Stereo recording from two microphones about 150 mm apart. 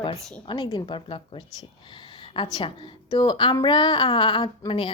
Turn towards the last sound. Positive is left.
turn(degrees=35)  # may be behind; listen again after turning